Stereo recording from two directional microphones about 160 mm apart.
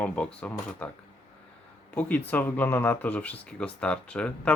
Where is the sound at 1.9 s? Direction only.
10° left (ahead or behind).